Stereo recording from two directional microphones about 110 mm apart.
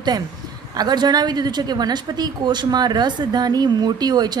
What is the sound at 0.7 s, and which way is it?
A woman's voice, 40° right (ahead or behind).